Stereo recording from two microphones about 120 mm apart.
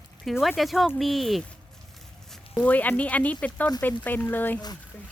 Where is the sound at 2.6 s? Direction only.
15° left (ahead or behind).